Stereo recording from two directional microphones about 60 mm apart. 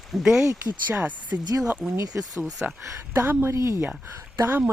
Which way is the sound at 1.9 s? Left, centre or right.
Right.